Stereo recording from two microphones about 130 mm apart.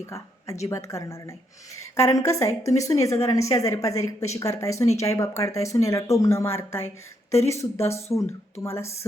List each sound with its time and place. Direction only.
0.0 s a woman's voice: 20° left (ahead or behind)